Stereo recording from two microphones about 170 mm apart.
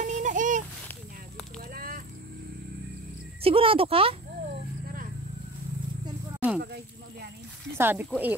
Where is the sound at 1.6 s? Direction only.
60° right (ahead or behind).